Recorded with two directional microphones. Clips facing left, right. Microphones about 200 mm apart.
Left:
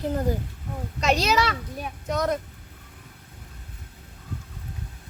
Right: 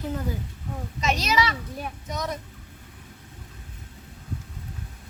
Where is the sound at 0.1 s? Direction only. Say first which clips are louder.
Left 5 dB; 50° left (ahead or behind).